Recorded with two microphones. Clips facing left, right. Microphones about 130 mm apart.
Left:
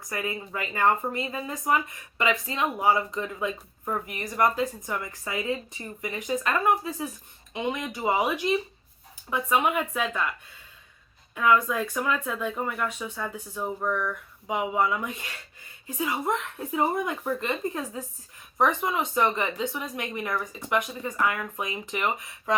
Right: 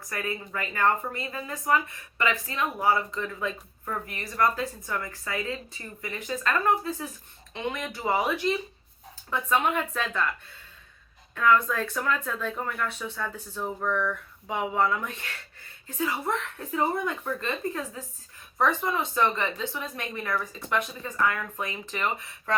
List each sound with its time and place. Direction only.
0.1 s speech: 20° left (ahead or behind)
11.3 s speech: 10° left (ahead or behind)